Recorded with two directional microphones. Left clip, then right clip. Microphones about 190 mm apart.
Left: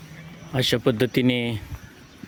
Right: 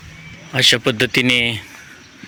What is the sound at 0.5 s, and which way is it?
Speech, 10° left (ahead or behind).